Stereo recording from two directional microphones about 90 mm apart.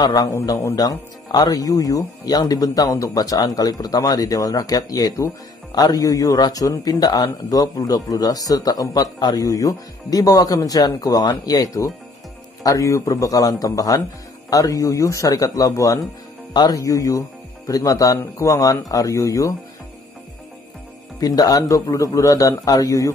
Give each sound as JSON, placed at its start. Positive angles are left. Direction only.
{"t": 0.0, "sound": "speech", "side_deg": 45}
{"t": 0.3, "sound": "a man's voice", "side_deg": 30}
{"t": 0.7, "sound": "a man's voice", "side_deg": 45}
{"t": 21.2, "sound": "a man's voice", "side_deg": 45}